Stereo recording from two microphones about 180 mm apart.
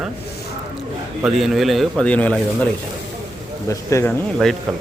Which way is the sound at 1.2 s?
Centre (ahead or behind).